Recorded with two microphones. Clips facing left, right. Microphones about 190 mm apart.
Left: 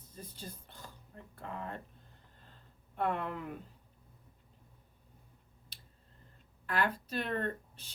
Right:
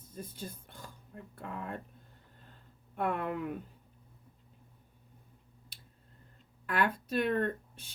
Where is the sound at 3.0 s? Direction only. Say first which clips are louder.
Right 2 dB; 50° right (ahead or behind).